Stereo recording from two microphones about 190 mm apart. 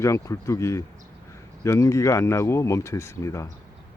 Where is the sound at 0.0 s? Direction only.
15° left (ahead or behind).